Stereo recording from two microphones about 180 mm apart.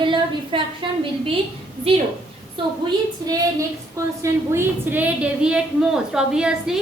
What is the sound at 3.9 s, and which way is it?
A woman's voice, 15° right (ahead or behind).